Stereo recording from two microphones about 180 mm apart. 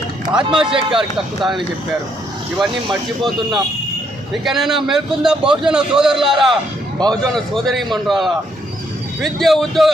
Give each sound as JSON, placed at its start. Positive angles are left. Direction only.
{"t": 0.3, "sound": "a man's voice", "side_deg": -5}
{"t": 0.7, "sound": "speech", "side_deg": -30}
{"t": 1.4, "sound": "a man's voice", "side_deg": 0}